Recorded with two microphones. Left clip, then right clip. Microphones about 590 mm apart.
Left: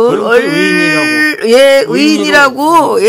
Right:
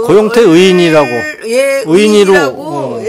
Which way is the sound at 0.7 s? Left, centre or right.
Right.